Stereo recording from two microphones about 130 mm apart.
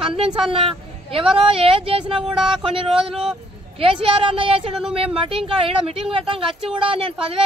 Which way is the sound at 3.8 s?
45° right (ahead or behind).